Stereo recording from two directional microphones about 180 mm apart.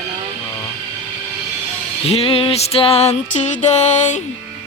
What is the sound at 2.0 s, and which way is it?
Music, 35° left (ahead or behind).